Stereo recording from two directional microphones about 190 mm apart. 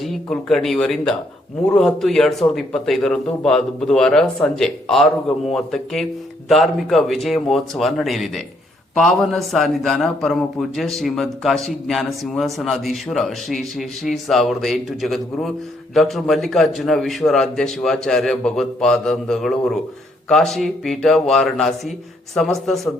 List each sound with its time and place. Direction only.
0.0 s a man's voice: centre (ahead or behind)